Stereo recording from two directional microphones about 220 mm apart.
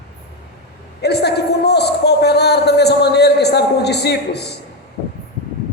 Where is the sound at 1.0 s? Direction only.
50° left (ahead or behind).